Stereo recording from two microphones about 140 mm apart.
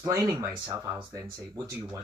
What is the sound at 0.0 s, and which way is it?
Speech, 20° right (ahead or behind).